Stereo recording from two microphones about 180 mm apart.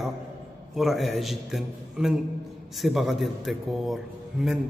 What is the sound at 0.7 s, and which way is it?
A man's voice, centre (ahead or behind).